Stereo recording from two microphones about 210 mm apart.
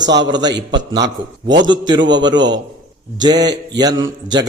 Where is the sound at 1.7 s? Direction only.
20° right (ahead or behind).